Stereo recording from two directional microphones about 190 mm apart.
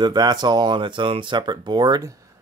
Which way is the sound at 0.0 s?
20° right (ahead or behind).